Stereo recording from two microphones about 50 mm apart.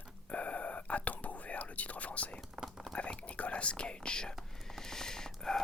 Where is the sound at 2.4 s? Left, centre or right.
Centre.